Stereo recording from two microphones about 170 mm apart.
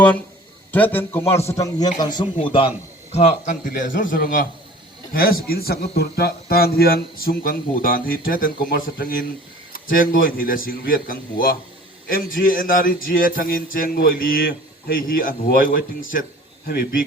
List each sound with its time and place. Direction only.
0.7 s a man's voice: 10° left (ahead or behind); by 16.2 s 55° left (ahead or behind)
16.6 s a man's voice: 65° left (ahead or behind)